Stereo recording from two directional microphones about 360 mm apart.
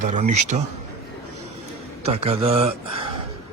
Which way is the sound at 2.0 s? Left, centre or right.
Centre.